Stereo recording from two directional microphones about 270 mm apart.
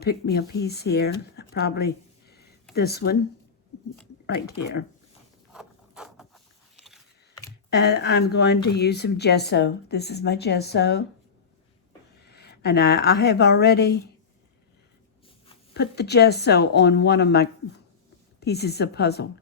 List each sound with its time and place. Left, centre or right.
0.0 s speech: left
4.3 s speech: left
5.5 s a sound: centre
7.7 s speech: left
12.2 s a woman's voice: left
15.7 s speech: left